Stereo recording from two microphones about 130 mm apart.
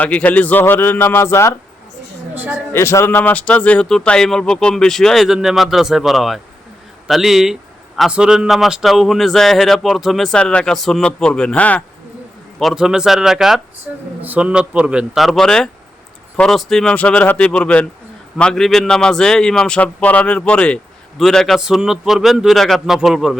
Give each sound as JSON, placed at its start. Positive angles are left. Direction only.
{"t": 0.0, "sound": "speech", "side_deg": 10}
{"t": 2.3, "sound": "a man's voice", "side_deg": -15}
{"t": 2.7, "sound": "speech", "side_deg": 20}
{"t": 12.5, "sound": "a man's voice", "side_deg": 0}